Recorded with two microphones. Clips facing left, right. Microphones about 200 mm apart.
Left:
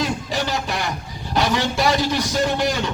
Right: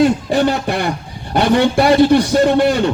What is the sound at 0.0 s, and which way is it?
A man's voice, 55° right (ahead or behind).